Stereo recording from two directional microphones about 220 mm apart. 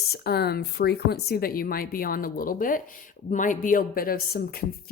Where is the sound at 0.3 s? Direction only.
45° left (ahead or behind).